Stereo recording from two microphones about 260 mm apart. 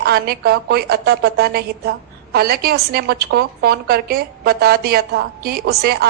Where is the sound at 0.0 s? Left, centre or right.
Right.